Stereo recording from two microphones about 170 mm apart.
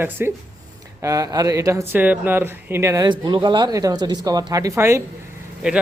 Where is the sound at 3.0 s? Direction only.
30° right (ahead or behind).